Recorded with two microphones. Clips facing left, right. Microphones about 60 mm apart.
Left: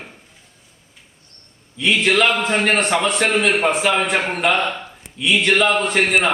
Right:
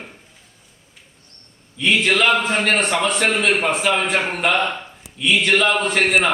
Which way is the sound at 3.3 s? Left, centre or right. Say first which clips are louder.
Left 1 dB; centre.